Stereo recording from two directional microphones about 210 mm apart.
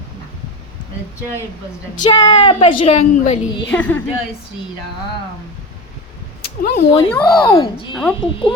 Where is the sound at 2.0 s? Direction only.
20° left (ahead or behind).